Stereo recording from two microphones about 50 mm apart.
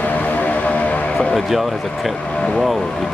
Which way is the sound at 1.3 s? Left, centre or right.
Centre.